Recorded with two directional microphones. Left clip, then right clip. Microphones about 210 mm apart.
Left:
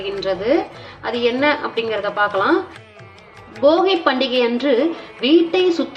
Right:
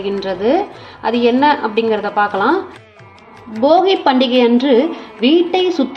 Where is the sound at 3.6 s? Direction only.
15° right (ahead or behind).